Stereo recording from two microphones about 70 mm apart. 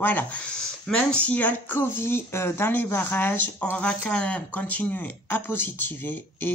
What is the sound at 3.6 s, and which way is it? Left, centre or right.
Speech, centre.